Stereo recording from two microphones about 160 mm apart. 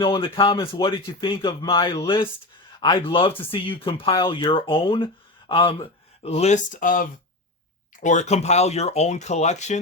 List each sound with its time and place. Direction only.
0.0 s speech: 35° left (ahead or behind); by 7.1 s 60° left (ahead or behind)
8.0 s speech: 45° left (ahead or behind)